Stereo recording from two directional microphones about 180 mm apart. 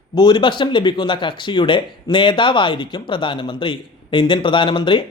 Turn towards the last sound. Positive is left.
turn(degrees=25)  # may be behind; listen again after turning